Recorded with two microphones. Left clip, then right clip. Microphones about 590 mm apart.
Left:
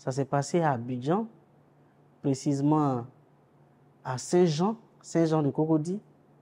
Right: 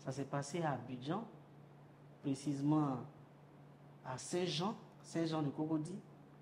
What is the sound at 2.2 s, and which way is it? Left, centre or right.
Speech, left.